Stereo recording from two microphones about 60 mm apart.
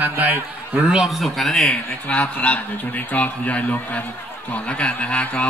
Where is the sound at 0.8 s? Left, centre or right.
Centre.